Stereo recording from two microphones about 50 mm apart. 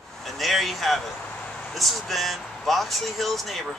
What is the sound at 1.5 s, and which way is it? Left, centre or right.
Vehicle, centre.